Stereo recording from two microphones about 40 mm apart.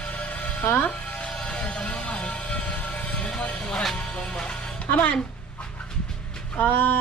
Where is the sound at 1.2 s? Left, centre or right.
Left.